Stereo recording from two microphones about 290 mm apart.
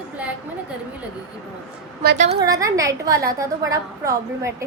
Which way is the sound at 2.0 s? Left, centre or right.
Right.